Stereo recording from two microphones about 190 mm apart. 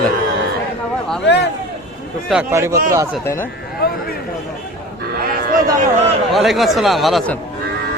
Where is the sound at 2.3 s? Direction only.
5° right (ahead or behind).